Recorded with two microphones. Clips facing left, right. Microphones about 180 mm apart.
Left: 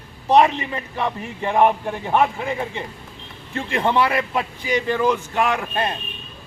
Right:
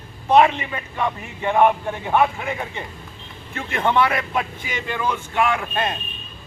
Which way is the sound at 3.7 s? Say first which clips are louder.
Even; 30° left (ahead or behind).